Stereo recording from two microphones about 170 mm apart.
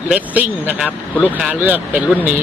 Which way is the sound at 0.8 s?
10° left (ahead or behind).